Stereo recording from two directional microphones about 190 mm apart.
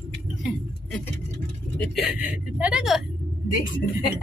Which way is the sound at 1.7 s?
Centre (ahead or behind).